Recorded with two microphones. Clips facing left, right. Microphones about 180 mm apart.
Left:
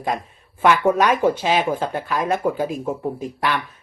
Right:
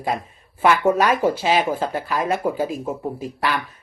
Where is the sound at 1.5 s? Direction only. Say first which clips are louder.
Even; 40° right (ahead or behind).